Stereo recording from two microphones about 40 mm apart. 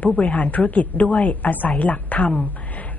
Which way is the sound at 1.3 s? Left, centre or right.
Left.